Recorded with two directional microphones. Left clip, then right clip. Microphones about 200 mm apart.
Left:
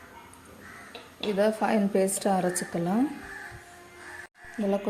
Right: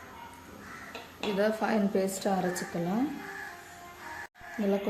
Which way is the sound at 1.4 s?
30° left (ahead or behind).